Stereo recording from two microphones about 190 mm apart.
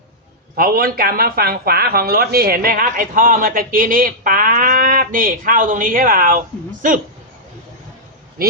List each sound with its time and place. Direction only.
0.5 s speech: 50° right (ahead or behind)
8.4 s a man's voice: 50° right (ahead or behind)